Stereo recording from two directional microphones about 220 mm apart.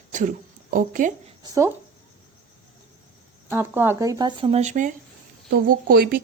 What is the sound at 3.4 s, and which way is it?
Speech, 10° right (ahead or behind).